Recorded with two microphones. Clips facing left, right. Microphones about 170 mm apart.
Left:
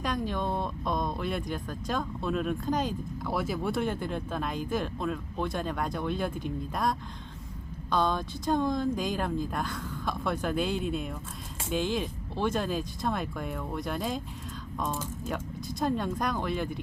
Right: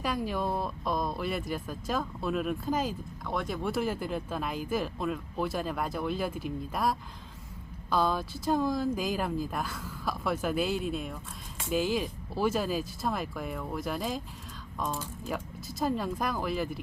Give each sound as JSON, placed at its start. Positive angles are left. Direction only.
{"t": 0.0, "sound": "speech", "side_deg": -5}